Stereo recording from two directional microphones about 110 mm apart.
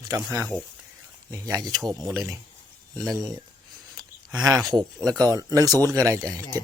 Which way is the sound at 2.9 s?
5° left (ahead or behind).